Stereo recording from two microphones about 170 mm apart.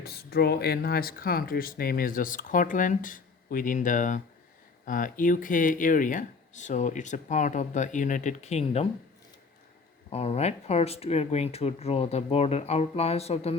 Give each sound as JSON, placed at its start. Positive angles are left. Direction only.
{"t": 0.0, "sound": "speech", "side_deg": 65}
{"t": 10.1, "sound": "speech", "side_deg": 35}